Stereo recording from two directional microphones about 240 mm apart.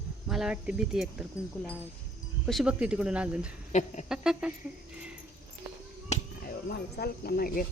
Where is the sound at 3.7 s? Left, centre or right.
Left.